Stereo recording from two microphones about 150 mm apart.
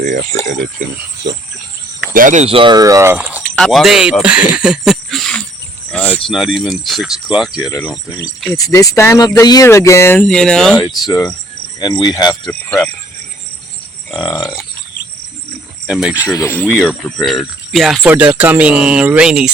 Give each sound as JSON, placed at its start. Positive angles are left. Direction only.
{"t": 0.0, "sound": "speech", "side_deg": -65}
{"t": 2.1, "sound": "speech", "side_deg": -55}
{"t": 3.4, "sound": "speech", "side_deg": 5}
{"t": 5.9, "sound": "cricket", "side_deg": 10}
{"t": 6.3, "sound": "speech", "side_deg": 0}
{"t": 8.5, "sound": "speech", "side_deg": 25}
{"t": 10.2, "sound": "speech", "side_deg": 5}
{"t": 11.0, "sound": "speech", "side_deg": 25}
{"t": 12.5, "sound": "speech", "side_deg": 10}
{"t": 14.1, "sound": "speech", "side_deg": 0}
{"t": 15.9, "sound": "speech", "side_deg": -5}
{"t": 16.3, "sound": "speech", "side_deg": 20}
{"t": 16.6, "sound": "speech", "side_deg": -5}
{"t": 18.1, "sound": "speech", "side_deg": -10}